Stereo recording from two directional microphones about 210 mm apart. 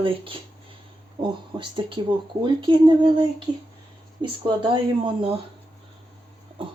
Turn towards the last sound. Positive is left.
turn(degrees=-25)  # may be behind; listen again after turning